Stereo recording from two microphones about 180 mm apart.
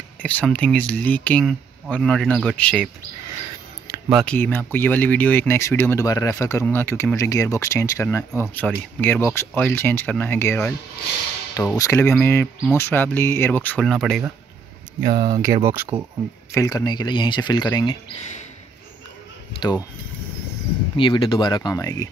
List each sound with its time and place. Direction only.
0.2 s speech: 10° left (ahead or behind)
4.1 s speech: 5° left (ahead or behind)
15.0 s speech: 20° right (ahead or behind)
16.5 s speech: 20° left (ahead or behind)
20.9 s speech: 30° left (ahead or behind)